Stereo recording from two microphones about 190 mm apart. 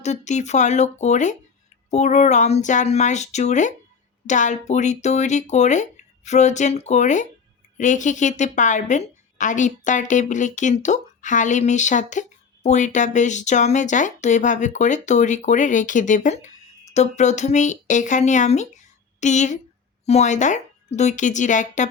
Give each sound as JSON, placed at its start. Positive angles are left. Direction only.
{"t": 0.0, "sound": "speech", "side_deg": 35}